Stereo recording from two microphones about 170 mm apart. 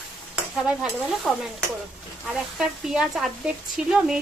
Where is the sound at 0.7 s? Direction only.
Centre (ahead or behind).